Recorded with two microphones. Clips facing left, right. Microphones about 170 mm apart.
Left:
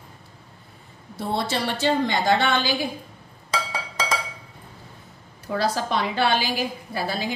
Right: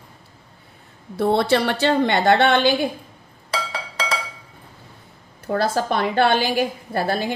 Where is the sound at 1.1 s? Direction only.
60° right (ahead or behind).